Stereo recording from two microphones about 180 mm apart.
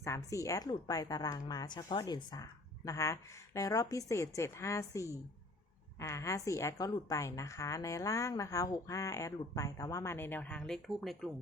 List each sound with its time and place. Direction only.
0.0 s a woman's voice: 15° left (ahead or behind); by 11.3 s centre (ahead or behind)